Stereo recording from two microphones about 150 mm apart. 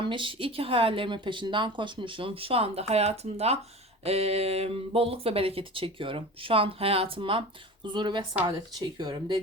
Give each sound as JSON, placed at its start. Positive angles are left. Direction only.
{"t": 0.0, "sound": "speech", "side_deg": -35}